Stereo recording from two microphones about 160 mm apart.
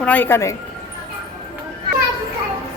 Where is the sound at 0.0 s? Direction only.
10° left (ahead or behind).